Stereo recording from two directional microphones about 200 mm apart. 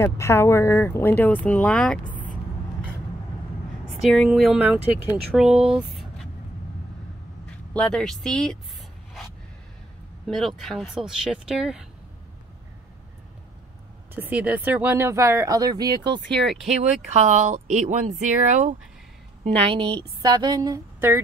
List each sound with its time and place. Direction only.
0.0 s speech: 10° left (ahead or behind)
4.0 s speech: centre (ahead or behind)
7.7 s speech: 5° left (ahead or behind)
10.2 s speech: centre (ahead or behind)
14.1 s speech: 10° right (ahead or behind)
16.4 s speech: centre (ahead or behind)
17.1 s speech: 35° right (ahead or behind)
19.7 s a woman's voice: 25° right (ahead or behind)